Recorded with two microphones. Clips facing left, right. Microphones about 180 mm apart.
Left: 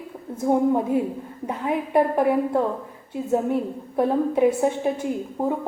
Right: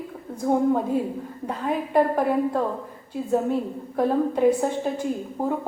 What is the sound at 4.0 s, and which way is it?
Speech, 15° left (ahead or behind).